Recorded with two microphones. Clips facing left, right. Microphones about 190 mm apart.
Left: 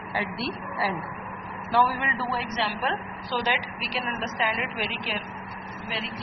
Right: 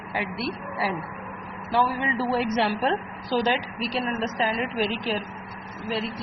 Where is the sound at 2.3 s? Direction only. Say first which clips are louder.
Right 8 dB; 50° right (ahead or behind).